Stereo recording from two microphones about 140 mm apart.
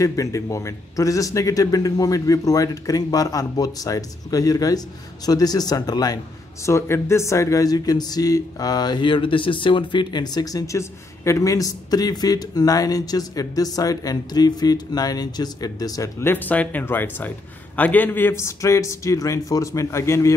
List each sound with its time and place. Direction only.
0.0 s speech: 25° left (ahead or behind)